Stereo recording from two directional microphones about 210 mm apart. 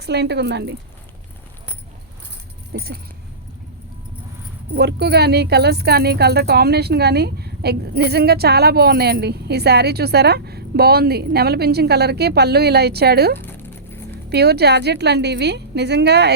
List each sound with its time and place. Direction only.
0.0 s speech: 50° right (ahead or behind)
2.7 s speech: 45° right (ahead or behind)
4.7 s speech: 50° right (ahead or behind)
13.4 s patter: 10° left (ahead or behind)
14.3 s speech: 50° right (ahead or behind)